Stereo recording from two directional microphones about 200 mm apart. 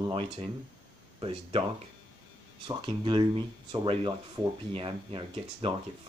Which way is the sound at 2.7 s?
25° right (ahead or behind).